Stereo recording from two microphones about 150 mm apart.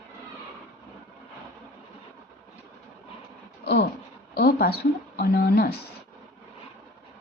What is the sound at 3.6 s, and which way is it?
A woman's voice, 90° left.